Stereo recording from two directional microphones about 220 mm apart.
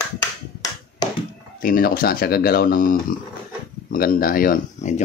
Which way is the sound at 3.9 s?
40° left (ahead or behind).